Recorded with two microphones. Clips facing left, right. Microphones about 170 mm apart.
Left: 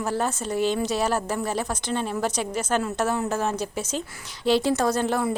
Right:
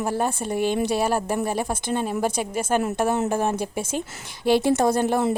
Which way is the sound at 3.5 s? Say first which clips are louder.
Right 2 dB; 55° right (ahead or behind).